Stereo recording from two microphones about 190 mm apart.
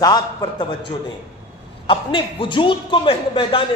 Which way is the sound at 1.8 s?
25° left (ahead or behind).